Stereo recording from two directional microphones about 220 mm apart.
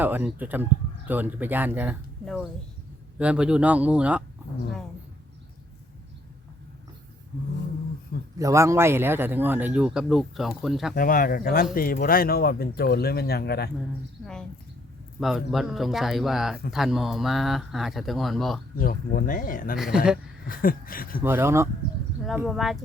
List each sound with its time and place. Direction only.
0.0 s speech: 10° right (ahead or behind)
2.2 s a man's voice: centre (ahead or behind)
8.4 s speech: 15° right (ahead or behind)
10.9 s speech: 40° left (ahead or behind)
15.2 s a man's voice: centre (ahead or behind)
18.8 s speech: 40° left (ahead or behind)
19.7 s a man's voice: 5° right (ahead or behind)
20.5 s speech: 40° left (ahead or behind)
21.2 s speech: 10° right (ahead or behind)
22.2 s a man's voice: centre (ahead or behind)